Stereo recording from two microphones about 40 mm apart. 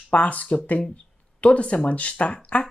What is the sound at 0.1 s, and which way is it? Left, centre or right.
A woman's voice, left.